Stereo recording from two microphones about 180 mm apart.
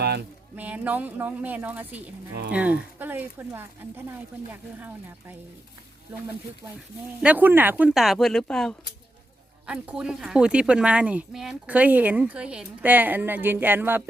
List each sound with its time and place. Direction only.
0.0 s a sound: 65° right (ahead or behind)
0.5 s a woman's voice: 10° right (ahead or behind)
7.2 s a woman's voice: 10° right (ahead or behind)